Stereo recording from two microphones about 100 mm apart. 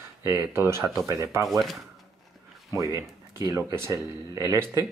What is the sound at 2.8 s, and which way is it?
Speech, 35° right (ahead or behind).